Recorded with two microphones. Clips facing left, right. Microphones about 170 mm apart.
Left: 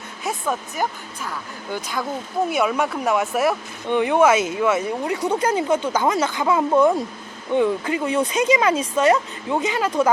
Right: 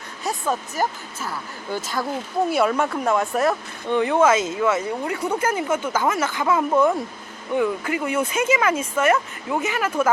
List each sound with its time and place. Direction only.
0.3 s speech: centre (ahead or behind)
2.5 s speech: centre (ahead or behind)
3.8 s speech: 20° left (ahead or behind)